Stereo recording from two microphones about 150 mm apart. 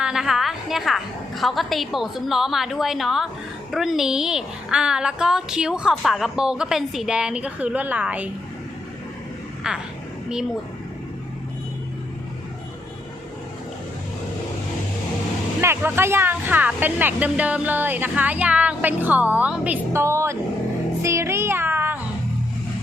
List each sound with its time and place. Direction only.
0.0 s a woman's voice: 5° right (ahead or behind)
9.7 s a woman's voice: 5° right (ahead or behind)
15.6 s speech: 15° right (ahead or behind)
21.0 s meow: 20° right (ahead or behind)